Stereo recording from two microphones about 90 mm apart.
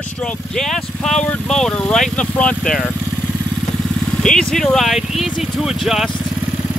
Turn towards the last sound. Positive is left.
turn(degrees=-5)  # may be behind; listen again after turning